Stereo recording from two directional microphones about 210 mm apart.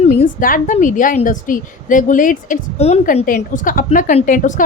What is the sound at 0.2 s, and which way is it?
A woman's voice, 40° left (ahead or behind).